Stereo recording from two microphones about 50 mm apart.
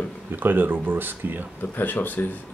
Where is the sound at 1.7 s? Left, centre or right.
Left.